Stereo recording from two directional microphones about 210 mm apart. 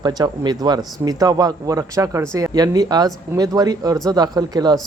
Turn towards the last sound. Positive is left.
turn(degrees=-20)  # may be behind; listen again after turning